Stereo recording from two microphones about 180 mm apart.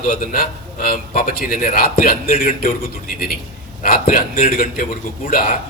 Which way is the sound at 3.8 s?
50° left (ahead or behind).